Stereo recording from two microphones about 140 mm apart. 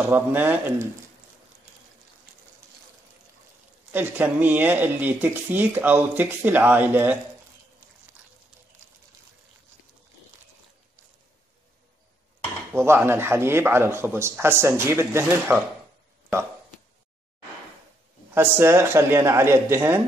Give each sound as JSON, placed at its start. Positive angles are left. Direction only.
{"t": 0.1, "sound": "speech", "side_deg": -15}
{"t": 3.9, "sound": "speech", "side_deg": -15}
{"t": 12.7, "sound": "speech", "side_deg": -15}
{"t": 18.3, "sound": "speech", "side_deg": -15}